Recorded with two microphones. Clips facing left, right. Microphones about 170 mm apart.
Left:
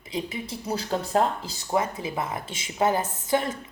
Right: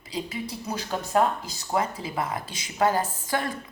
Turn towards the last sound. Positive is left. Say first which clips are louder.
# left 3 dB
turn(degrees=20)  # may be behind; listen again after turning